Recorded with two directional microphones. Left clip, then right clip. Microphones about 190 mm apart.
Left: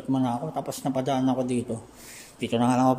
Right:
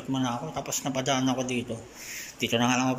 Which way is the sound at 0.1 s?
20° left (ahead or behind).